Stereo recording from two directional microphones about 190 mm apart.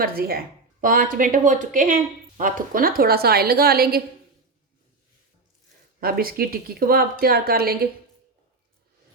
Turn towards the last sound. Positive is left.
turn(degrees=-55)  # may be behind; listen again after turning